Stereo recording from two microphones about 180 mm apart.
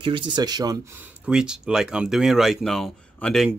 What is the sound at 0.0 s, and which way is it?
Speech, 25° right (ahead or behind).